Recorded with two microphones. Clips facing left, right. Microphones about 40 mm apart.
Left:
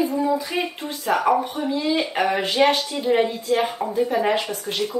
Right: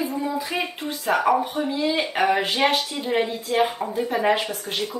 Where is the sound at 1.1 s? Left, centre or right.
Centre.